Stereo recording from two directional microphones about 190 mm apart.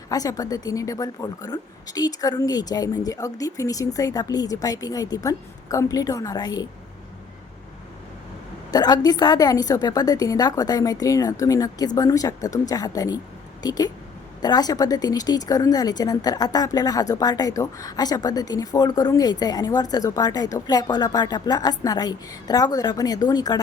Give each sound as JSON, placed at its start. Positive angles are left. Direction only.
{"t": 0.1, "sound": "a woman's voice", "side_deg": 20}
{"t": 8.7, "sound": "a woman's voice", "side_deg": 20}